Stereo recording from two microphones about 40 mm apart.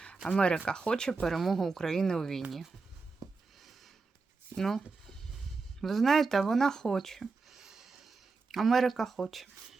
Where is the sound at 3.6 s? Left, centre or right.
Centre.